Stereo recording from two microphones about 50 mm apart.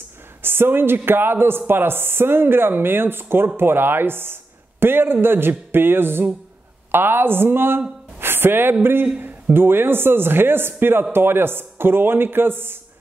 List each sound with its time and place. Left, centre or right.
0.4 s speech: right
8.2 s a sound: right
9.0 s speech: right